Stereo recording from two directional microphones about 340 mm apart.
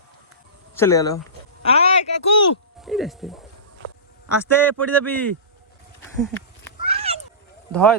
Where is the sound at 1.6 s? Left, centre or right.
Centre.